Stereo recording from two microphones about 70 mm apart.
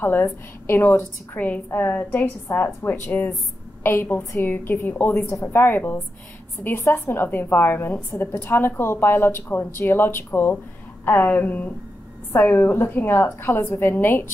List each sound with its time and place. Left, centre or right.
0.0 s a woman's voice: left